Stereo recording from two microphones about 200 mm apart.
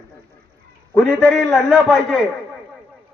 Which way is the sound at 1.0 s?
5° left (ahead or behind).